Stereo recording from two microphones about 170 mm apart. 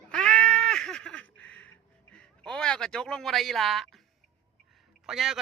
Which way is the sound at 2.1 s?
5° left (ahead or behind).